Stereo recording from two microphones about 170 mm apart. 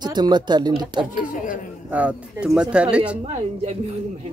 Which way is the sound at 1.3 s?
50° left (ahead or behind).